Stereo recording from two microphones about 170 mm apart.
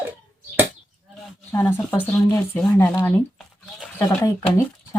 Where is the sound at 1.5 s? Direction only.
15° left (ahead or behind).